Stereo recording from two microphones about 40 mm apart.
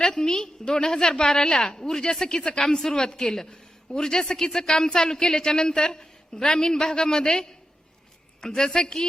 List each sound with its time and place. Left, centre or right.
0.0 s a woman's voice: centre